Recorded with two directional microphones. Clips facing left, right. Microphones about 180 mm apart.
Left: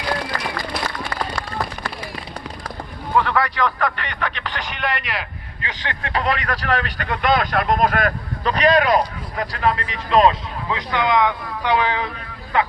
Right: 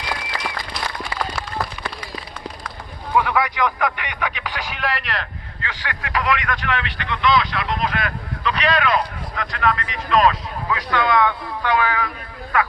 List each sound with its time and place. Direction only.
1.1 s run: 5° right (ahead or behind)
3.2 s radio: 10° right (ahead or behind)
5.6 s speech: 25° left (ahead or behind)